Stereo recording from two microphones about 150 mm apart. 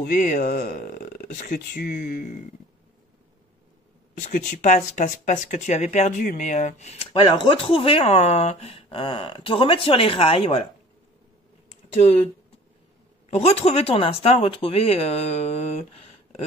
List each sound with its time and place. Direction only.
0.0 s speech: 60° left (ahead or behind)
1.6 s speech: 75° left (ahead or behind)
4.2 s speech: 55° left (ahead or behind); by 10.7 s 40° left (ahead or behind)
11.9 s speech: 45° left (ahead or behind)
13.3 s speech: 45° left (ahead or behind)